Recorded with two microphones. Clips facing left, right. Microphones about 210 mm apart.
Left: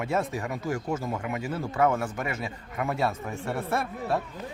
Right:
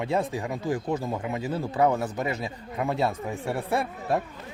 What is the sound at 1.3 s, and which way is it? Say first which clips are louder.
Speech: right 2 dB; 35° right (ahead or behind).